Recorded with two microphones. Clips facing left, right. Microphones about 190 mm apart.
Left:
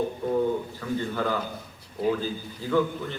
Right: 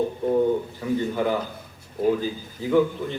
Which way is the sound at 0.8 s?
15° right (ahead or behind).